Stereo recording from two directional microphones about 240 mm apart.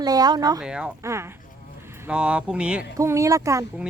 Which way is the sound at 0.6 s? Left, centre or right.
Centre.